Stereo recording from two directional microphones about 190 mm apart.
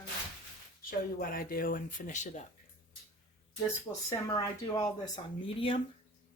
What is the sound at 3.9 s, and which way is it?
Speech, 25° left (ahead or behind).